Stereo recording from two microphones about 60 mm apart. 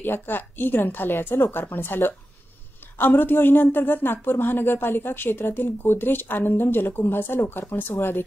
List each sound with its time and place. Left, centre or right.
0.0 s speech: left